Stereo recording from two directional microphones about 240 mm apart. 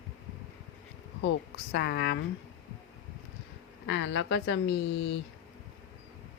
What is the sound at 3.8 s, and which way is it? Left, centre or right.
Speech, left.